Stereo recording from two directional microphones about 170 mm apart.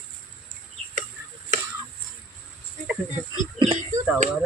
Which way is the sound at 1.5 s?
50° right (ahead or behind).